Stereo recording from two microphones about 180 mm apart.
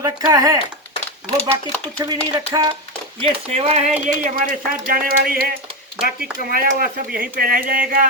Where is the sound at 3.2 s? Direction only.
35° right (ahead or behind).